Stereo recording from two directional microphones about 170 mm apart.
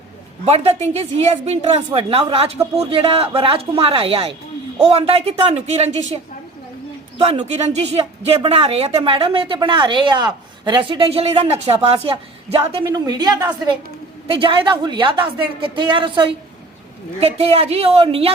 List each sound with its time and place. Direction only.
0.4 s speech: 35° right (ahead or behind)
7.2 s speech: 35° right (ahead or behind)